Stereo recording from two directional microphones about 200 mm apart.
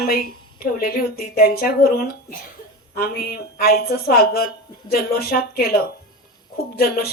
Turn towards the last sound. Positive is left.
turn(degrees=50)  # may be behind; listen again after turning